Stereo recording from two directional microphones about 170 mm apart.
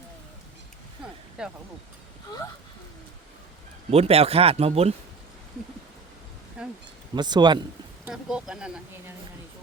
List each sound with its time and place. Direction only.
1.4 s speech: 5° right (ahead or behind)
3.8 s speech: 35° right (ahead or behind)
6.6 s speech: 5° right (ahead or behind)
7.2 s speech: 25° right (ahead or behind)
8.0 s speech: 5° right (ahead or behind)